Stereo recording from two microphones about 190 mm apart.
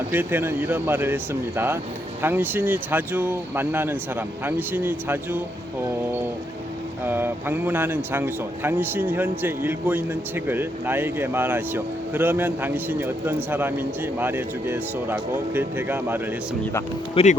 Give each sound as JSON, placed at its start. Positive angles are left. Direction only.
{"t": 0.1, "sound": "speech", "side_deg": -10}
{"t": 7.0, "sound": "speech", "side_deg": -10}
{"t": 17.2, "sound": "speech", "side_deg": 30}